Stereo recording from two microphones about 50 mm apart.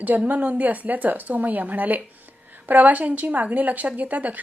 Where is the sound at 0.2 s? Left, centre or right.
Right.